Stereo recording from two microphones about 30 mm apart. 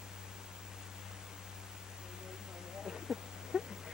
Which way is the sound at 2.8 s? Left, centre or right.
Centre.